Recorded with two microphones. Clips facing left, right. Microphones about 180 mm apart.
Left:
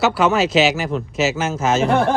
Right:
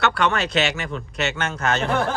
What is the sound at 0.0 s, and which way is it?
Speech, 5° left (ahead or behind).